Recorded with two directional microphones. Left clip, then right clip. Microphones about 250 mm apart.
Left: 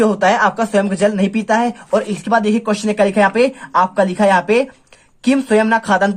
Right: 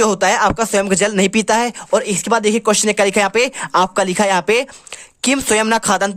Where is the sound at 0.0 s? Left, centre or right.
Right.